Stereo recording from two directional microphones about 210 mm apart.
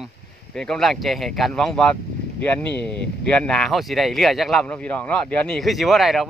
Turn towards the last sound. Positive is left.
turn(degrees=0)  # may be behind; listen again after turning